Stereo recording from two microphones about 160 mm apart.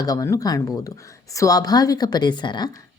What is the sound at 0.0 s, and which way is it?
Speech, 20° left (ahead or behind).